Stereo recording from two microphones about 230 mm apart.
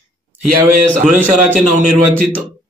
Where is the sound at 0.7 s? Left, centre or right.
Right.